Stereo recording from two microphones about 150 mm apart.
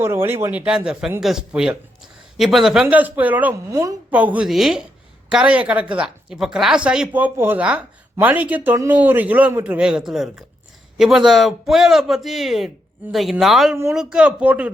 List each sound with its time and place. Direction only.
0.0 s speech: 15° right (ahead or behind)
3.7 s a woman's voice: 20° right (ahead or behind)
4.1 s speech: 10° right (ahead or behind)